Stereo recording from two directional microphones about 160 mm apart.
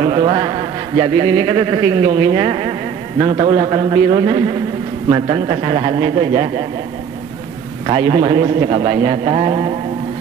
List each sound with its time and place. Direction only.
0.0 s a man's voice: 30° right (ahead or behind)
7.8 s a man's voice: 30° right (ahead or behind)